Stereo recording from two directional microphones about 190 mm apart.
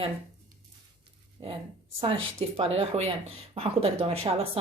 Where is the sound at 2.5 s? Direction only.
30° right (ahead or behind).